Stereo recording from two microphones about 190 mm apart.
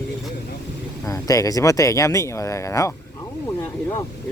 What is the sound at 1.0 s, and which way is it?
Speech, 15° left (ahead or behind).